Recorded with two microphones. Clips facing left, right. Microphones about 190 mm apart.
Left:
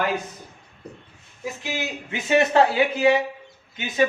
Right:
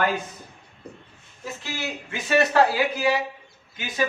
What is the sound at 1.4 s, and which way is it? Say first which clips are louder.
Speech: left 3 dB; 15° left (ahead or behind).